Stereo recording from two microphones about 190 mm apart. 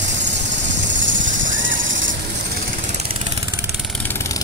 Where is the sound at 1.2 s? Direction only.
45° right (ahead or behind).